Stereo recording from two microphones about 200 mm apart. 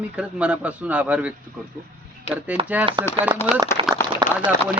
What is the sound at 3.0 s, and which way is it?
Speech, 20° right (ahead or behind).